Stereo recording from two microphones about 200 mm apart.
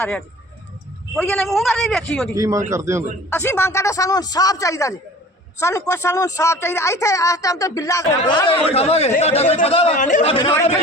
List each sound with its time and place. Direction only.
1.1 s a man's voice: 5° left (ahead or behind)
2.3 s a man's voice: 15° right (ahead or behind)
3.3 s speech: 10° left (ahead or behind); by 10.5 s 30° left (ahead or behind)